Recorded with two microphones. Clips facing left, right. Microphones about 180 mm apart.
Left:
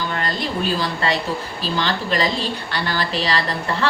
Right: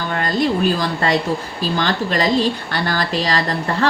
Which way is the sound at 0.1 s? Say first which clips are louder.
Right 6 dB; 50° right (ahead or behind).